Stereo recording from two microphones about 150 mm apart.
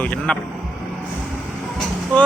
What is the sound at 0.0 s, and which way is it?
Speech, 10° left (ahead or behind).